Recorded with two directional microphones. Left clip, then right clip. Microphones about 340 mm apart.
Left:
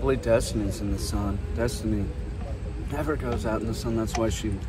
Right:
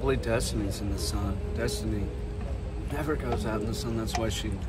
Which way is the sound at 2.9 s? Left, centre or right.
Centre.